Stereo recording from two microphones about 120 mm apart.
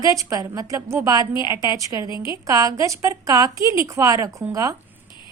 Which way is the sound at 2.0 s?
40° left (ahead or behind).